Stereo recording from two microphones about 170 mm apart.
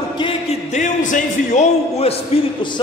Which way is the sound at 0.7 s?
45° left (ahead or behind).